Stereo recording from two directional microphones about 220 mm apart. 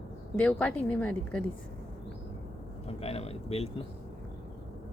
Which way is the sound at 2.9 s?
25° left (ahead or behind).